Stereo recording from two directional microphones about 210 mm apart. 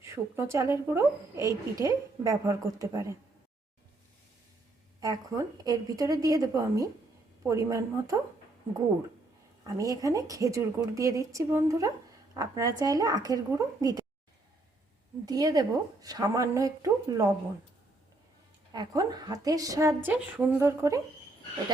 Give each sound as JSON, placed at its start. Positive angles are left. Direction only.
{"t": 0.0, "sound": "a woman's voice", "side_deg": -15}
{"t": 4.9, "sound": "a woman's voice", "side_deg": -15}
{"t": 9.6, "sound": "a woman's voice", "side_deg": -15}
{"t": 15.3, "sound": "a woman's voice", "side_deg": -15}
{"t": 18.7, "sound": "a woman's voice", "side_deg": -20}